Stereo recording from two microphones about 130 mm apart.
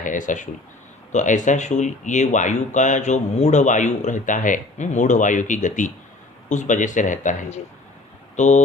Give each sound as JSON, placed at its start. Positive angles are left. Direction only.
{"t": 0.0, "sound": "speech", "side_deg": 80}
{"t": 1.1, "sound": "speech", "side_deg": 70}
{"t": 8.4, "sound": "speech", "side_deg": 65}